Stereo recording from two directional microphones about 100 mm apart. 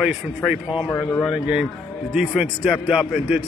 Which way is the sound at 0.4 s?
5° right (ahead or behind).